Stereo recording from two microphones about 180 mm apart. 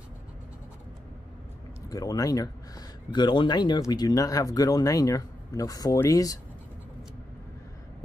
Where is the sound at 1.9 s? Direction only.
20° left (ahead or behind).